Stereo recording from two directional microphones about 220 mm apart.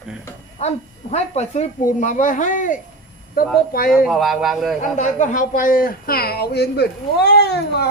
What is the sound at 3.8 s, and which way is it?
Speech, centre (ahead or behind).